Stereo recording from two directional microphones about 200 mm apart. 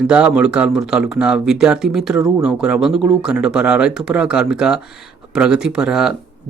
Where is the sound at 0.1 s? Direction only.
5° right (ahead or behind).